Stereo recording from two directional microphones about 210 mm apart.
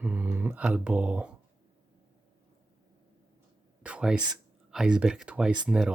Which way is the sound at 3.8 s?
5° right (ahead or behind).